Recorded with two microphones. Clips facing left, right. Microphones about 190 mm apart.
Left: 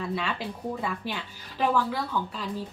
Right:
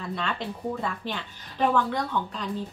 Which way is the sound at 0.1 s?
5° left (ahead or behind).